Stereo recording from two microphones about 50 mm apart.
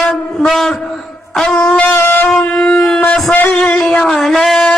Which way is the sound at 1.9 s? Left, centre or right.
Left.